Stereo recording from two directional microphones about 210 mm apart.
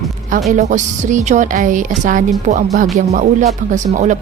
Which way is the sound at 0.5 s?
35° right (ahead or behind).